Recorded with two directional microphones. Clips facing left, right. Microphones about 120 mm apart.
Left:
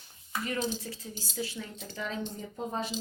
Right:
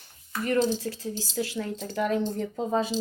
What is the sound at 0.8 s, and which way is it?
Speech, 85° right.